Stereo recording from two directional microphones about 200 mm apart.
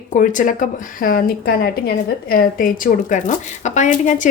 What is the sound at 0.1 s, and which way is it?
Speech, 40° left (ahead or behind).